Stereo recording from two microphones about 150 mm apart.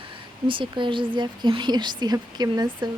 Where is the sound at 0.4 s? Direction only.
35° right (ahead or behind).